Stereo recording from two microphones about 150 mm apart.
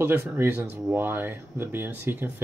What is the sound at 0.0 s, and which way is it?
Speech, 15° right (ahead or behind).